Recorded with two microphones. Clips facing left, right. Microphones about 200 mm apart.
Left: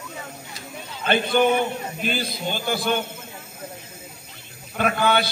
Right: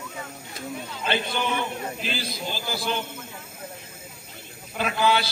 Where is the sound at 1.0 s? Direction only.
55° left (ahead or behind).